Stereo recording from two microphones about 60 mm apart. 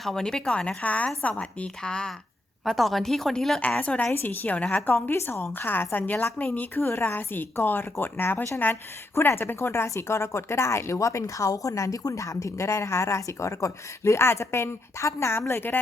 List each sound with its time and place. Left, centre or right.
0.0 s a woman's voice: centre
2.6 s speech: centre
3.6 s a woman's voice: left
4.1 s a woman's voice: left
5.1 s a woman's voice: left